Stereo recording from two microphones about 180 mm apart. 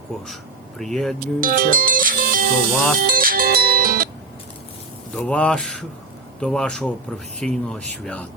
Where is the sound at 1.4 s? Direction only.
50° right (ahead or behind).